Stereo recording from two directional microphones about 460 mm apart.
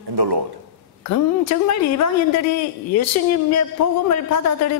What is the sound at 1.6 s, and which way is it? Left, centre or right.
Speech, left.